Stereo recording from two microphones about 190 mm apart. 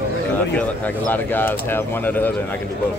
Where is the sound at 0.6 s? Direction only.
10° left (ahead or behind).